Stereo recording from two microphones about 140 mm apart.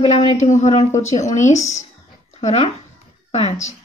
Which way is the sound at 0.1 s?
55° left (ahead or behind).